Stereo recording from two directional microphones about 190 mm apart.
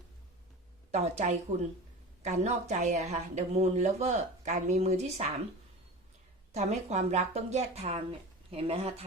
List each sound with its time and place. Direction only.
0.9 s speech: 35° right (ahead or behind)
6.5 s speech: 35° right (ahead or behind)